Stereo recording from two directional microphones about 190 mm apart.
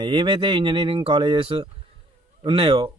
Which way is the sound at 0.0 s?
25° right (ahead or behind).